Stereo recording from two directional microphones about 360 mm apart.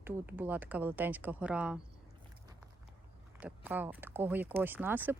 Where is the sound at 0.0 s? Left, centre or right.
Centre.